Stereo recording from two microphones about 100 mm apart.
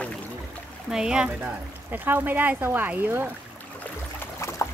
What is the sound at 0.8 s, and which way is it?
Speech, 5° right (ahead or behind).